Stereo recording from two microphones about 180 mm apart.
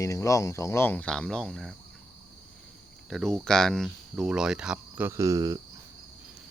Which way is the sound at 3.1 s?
Centre (ahead or behind).